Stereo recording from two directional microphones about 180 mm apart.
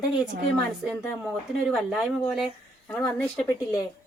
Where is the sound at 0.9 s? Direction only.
5° left (ahead or behind).